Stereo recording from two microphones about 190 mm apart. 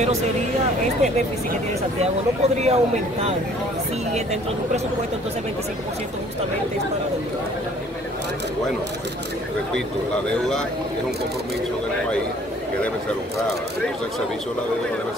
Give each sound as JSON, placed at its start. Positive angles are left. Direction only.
{"t": 0.0, "sound": "speech", "side_deg": -35}
{"t": 1.8, "sound": "speech", "side_deg": -35}